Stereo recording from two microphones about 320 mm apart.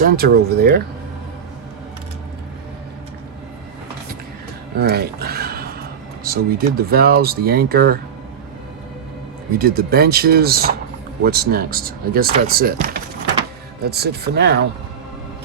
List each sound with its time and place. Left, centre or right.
0.0 s speech: right
4.8 s speech: right
9.6 s speech: right